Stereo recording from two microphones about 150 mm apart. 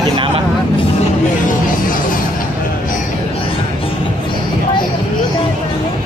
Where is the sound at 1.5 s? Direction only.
65° left (ahead or behind).